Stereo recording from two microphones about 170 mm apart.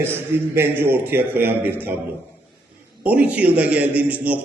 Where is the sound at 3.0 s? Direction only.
10° right (ahead or behind).